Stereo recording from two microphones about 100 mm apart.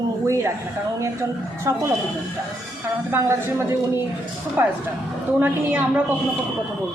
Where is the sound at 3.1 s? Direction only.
25° right (ahead or behind).